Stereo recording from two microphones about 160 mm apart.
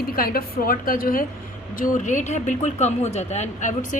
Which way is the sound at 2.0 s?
50° left (ahead or behind).